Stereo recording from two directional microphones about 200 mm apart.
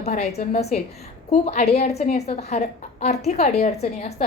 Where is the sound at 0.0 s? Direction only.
30° left (ahead or behind).